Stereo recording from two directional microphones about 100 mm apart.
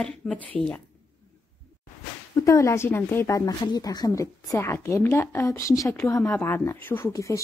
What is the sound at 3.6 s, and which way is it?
Speech, 40° left (ahead or behind).